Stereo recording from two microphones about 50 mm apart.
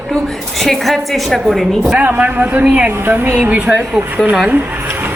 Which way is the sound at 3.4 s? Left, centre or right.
Right.